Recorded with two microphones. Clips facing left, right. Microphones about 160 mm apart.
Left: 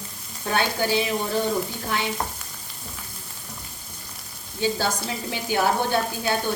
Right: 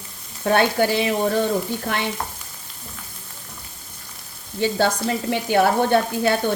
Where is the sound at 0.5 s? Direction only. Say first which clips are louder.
Right 5 dB; 65° right (ahead or behind).